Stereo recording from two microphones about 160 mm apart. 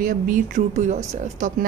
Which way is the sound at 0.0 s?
55° right (ahead or behind).